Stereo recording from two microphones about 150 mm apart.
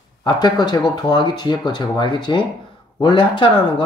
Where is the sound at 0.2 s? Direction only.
30° left (ahead or behind).